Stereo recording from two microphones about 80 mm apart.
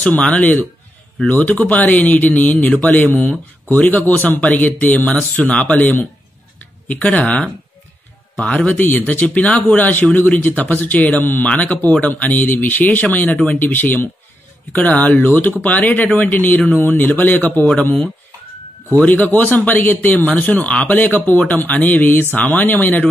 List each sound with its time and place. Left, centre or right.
0.0 s speech: centre
7.2 s speech: centre